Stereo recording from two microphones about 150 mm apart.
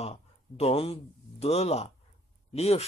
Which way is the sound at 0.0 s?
45° left (ahead or behind).